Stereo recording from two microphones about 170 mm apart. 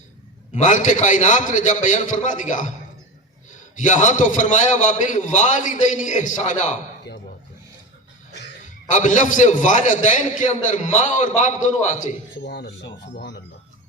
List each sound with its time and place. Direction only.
0.5 s a man's voice: 45° left (ahead or behind)
3.8 s a man's voice: 45° left (ahead or behind)
8.9 s a man's voice: 45° left (ahead or behind)
12.4 s speech: 85° left